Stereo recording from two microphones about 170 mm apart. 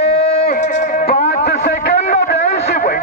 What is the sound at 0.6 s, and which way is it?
Music, 45° left (ahead or behind).